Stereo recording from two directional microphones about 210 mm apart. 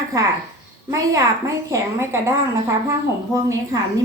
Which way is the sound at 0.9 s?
15° right (ahead or behind).